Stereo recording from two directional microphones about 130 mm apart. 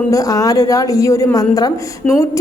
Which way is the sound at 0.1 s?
25° left (ahead or behind).